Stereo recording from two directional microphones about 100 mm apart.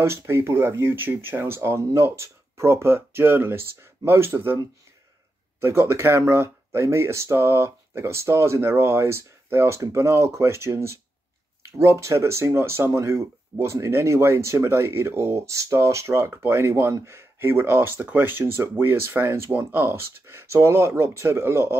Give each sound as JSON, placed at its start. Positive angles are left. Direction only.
{"t": 0.0, "sound": "speech", "side_deg": -25}
{"t": 5.6, "sound": "speech", "side_deg": -25}